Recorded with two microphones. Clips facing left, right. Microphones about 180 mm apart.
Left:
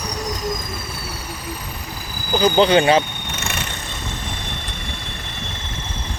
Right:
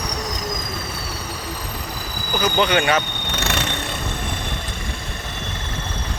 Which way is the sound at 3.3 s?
70° right (ahead or behind).